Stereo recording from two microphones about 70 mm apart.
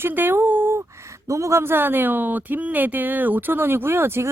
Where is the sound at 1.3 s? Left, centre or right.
Right.